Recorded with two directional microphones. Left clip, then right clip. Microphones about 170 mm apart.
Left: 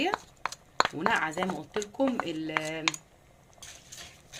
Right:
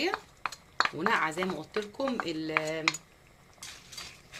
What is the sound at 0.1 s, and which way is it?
Speech, 50° left (ahead or behind).